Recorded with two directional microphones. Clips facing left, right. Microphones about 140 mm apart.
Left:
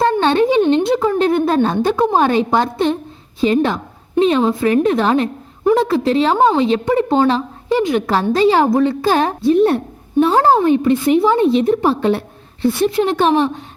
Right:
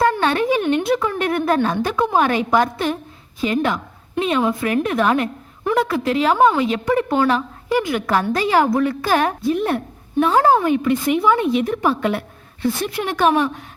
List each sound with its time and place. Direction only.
0.0 s a woman's voice: 25° left (ahead or behind)